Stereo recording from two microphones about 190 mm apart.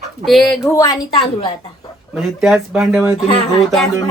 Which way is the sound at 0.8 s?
20° left (ahead or behind).